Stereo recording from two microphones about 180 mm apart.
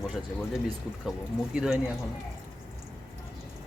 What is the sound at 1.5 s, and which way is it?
Speech, 5° right (ahead or behind).